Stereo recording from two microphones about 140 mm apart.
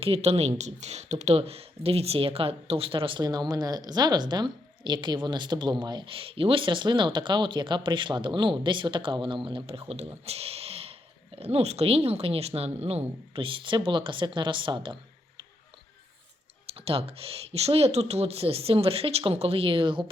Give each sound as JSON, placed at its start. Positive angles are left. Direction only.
{"t": 0.0, "sound": "speech", "side_deg": -45}
{"t": 3.2, "sound": "speech", "side_deg": -30}
{"t": 16.6, "sound": "speech", "side_deg": -45}